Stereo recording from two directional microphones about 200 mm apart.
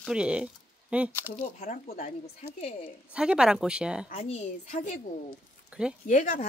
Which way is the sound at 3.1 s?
5° right (ahead or behind).